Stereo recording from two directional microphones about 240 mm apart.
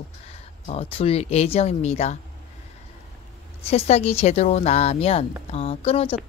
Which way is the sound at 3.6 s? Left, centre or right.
Left.